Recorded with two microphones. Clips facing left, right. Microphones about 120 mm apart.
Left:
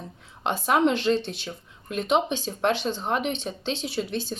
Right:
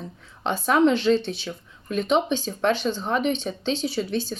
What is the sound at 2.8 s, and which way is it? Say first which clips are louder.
Speech: right 3 dB; 40° left (ahead or behind).